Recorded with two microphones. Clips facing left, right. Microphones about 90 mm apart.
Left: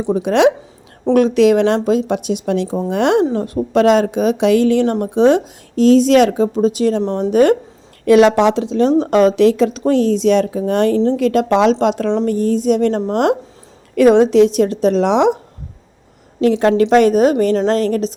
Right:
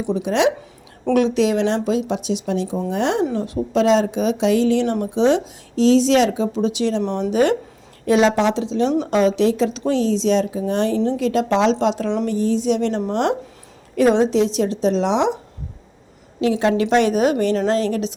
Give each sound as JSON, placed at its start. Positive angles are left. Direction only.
{"t": 0.1, "sound": "speech", "side_deg": 55}
{"t": 1.0, "sound": "speech", "side_deg": 45}
{"t": 2.6, "sound": "a woman's voice", "side_deg": 35}
{"t": 2.9, "sound": "speech", "side_deg": 60}
{"t": 3.3, "sound": "a woman's voice", "side_deg": 50}
{"t": 7.3, "sound": "speech", "side_deg": 50}
{"t": 8.0, "sound": "speech", "side_deg": 60}
{"t": 13.9, "sound": "speech", "side_deg": 60}
{"t": 16.4, "sound": "a woman's voice", "side_deg": 50}